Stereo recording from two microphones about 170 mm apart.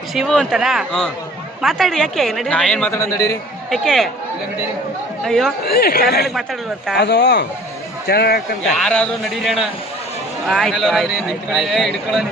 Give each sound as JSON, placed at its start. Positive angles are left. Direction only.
{"t": 0.1, "sound": "a man's voice", "side_deg": 0}
{"t": 3.7, "sound": "a man's voice", "side_deg": 0}
{"t": 5.2, "sound": "a man's voice", "side_deg": 0}
{"t": 5.6, "sound": "speech", "side_deg": 65}
{"t": 6.2, "sound": "a man's voice", "side_deg": 0}
{"t": 6.9, "sound": "speech", "side_deg": 80}
{"t": 8.0, "sound": "speech", "side_deg": 65}
{"t": 8.8, "sound": "a man's voice", "side_deg": 5}